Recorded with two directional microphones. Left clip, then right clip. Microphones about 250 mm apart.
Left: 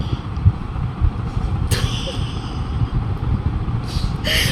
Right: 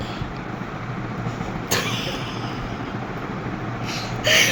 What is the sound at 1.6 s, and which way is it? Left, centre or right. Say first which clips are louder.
Vehicle: right 2 dB; centre.